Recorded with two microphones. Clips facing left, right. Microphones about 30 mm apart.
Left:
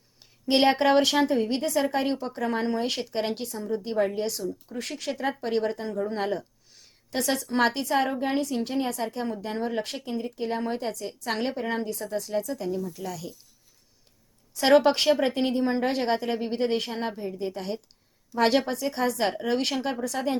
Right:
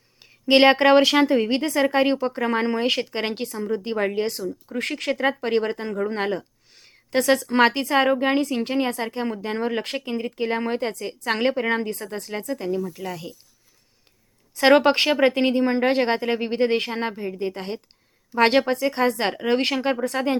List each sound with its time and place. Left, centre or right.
0.4 s a woman's voice: right
5.3 s a woman's voice: right
14.5 s a woman's voice: right
18.3 s a woman's voice: right